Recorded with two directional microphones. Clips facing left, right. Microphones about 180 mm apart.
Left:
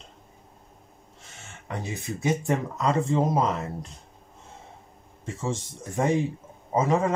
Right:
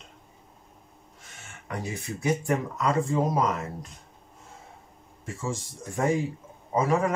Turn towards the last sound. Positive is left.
turn(degrees=20)  # may be behind; listen again after turning